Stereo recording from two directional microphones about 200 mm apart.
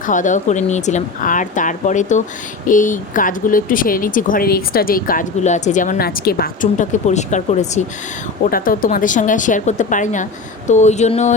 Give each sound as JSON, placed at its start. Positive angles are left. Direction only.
{"t": 0.0, "sound": "speech", "side_deg": 40}